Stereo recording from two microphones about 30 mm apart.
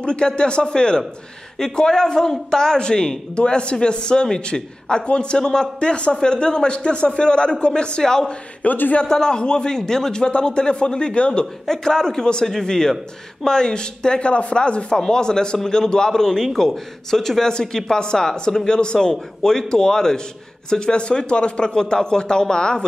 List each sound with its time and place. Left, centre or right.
0.0 s a man's voice: left
8.0 s speech: centre
8.6 s a man's voice: left
9.0 s speech: left
10.2 s a man's voice: left
11.6 s a man's voice: centre; by 15.0 s left
15.0 s a man's voice: left
20.7 s speech: left